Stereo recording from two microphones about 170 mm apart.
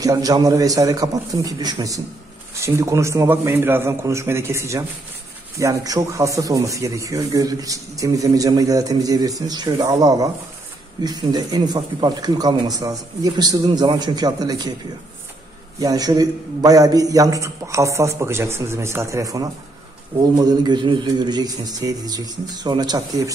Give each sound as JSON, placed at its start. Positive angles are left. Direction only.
{"t": 0.0, "sound": "a man's voice", "side_deg": -20}
{"t": 15.8, "sound": "a man's voice", "side_deg": -20}